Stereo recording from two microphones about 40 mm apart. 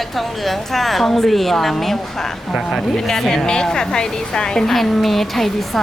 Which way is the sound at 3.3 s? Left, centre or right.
Centre.